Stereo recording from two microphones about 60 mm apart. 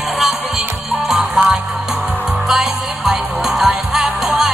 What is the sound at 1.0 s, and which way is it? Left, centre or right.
Music, centre.